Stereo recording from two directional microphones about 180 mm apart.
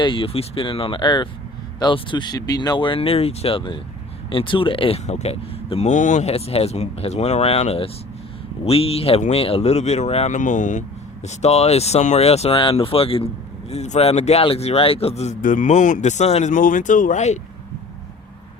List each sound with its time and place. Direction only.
0.0 s speech: 30° left (ahead or behind)